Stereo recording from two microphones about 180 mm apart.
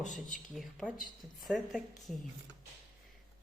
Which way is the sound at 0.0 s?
45° left (ahead or behind).